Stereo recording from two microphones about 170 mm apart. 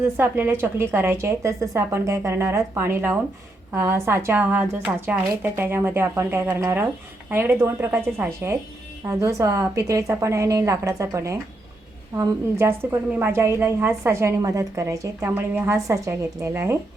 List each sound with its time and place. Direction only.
0.0 s a woman's voice: 15° right (ahead or behind)